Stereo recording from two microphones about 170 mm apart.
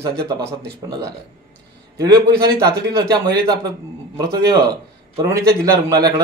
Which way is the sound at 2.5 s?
20° right (ahead or behind).